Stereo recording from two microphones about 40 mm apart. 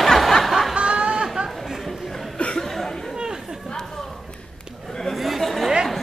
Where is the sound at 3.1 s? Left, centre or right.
Centre.